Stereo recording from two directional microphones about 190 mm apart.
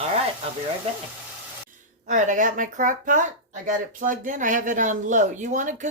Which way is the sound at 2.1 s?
40° right (ahead or behind).